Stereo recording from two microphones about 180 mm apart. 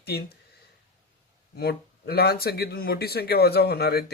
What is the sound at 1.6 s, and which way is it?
Speech, 60° left (ahead or behind).